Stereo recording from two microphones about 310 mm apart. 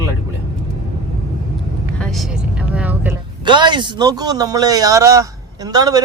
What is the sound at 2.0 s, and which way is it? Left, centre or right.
Speech, centre.